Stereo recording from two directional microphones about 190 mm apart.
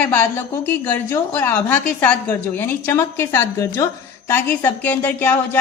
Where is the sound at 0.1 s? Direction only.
10° left (ahead or behind).